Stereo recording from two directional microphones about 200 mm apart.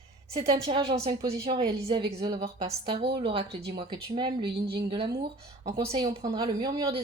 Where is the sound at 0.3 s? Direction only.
25° right (ahead or behind).